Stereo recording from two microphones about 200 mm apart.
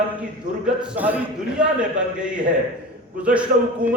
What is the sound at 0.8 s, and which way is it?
A man's voice, 10° right (ahead or behind).